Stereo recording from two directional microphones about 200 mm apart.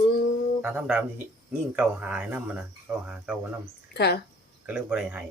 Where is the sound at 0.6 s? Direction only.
5° right (ahead or behind).